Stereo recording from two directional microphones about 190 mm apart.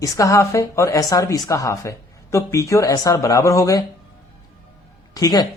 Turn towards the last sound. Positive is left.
turn(degrees=20)  # may be behind; listen again after turning